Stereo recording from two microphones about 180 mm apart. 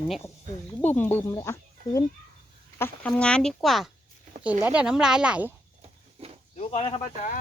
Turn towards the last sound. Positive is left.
turn(degrees=35)  # may be behind; listen again after turning